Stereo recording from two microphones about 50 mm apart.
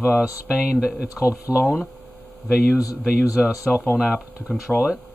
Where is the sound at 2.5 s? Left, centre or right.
Centre.